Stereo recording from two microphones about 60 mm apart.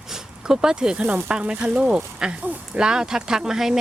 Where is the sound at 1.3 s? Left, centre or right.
Centre.